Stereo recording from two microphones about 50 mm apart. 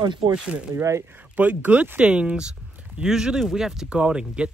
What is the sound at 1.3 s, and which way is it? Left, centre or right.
Speech, right.